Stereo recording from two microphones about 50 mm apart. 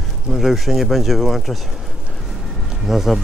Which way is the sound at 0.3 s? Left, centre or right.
Centre.